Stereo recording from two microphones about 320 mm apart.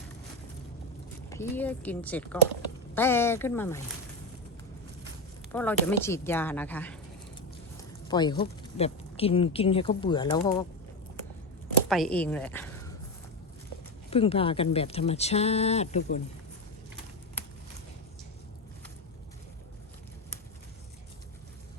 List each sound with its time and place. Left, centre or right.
1.3 s a woman's voice: centre
5.5 s speech: centre
11.9 s speech: centre
14.1 s speech: centre